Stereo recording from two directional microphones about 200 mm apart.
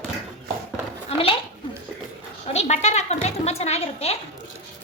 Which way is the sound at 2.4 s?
30° left (ahead or behind).